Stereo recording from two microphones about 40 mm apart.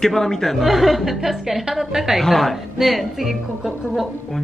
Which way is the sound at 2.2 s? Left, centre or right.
Centre.